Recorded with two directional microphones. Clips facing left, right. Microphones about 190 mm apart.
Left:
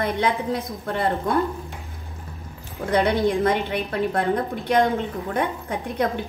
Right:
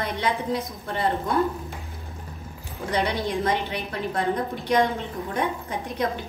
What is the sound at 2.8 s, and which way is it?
A woman's voice, 55° left (ahead or behind).